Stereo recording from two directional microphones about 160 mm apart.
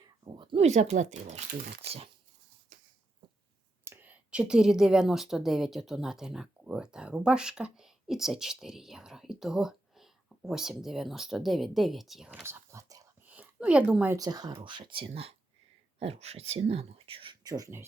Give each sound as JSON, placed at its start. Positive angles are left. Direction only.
{"t": 0.0, "sound": "speech", "side_deg": -30}
{"t": 1.5, "sound": "speech", "side_deg": -80}
{"t": 3.8, "sound": "a woman's voice", "side_deg": -10}
{"t": 12.4, "sound": "whispering", "side_deg": -15}
{"t": 13.2, "sound": "a sound", "side_deg": -10}
{"t": 14.2, "sound": "speech", "side_deg": -25}
{"t": 17.5, "sound": "speech", "side_deg": -20}